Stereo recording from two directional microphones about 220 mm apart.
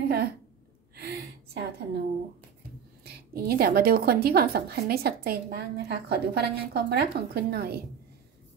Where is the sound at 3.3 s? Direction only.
45° right (ahead or behind).